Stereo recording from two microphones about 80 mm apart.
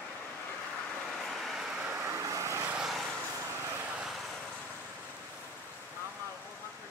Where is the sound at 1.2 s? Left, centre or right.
Centre.